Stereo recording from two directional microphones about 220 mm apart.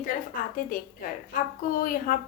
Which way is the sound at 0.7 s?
40° left (ahead or behind).